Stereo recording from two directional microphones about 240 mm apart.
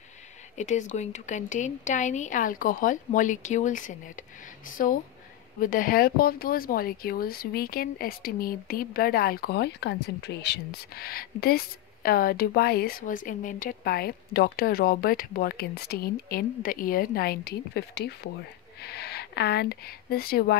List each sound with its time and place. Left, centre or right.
0.6 s speech: left